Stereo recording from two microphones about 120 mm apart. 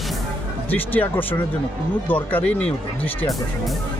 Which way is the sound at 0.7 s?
15° left (ahead or behind).